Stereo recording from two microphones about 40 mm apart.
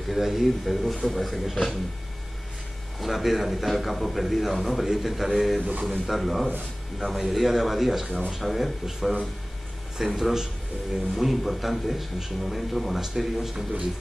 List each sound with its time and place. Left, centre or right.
0.1 s a man's voice: centre
3.0 s a man's voice: centre
5.6 s speech: right
5.9 s a man's voice: centre